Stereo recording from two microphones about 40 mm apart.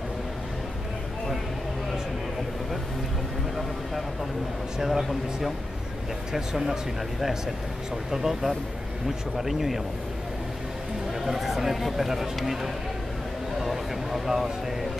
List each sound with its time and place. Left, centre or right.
4.7 s speech: centre
6.3 s speech: centre
11.2 s speech: centre
13.6 s speech: centre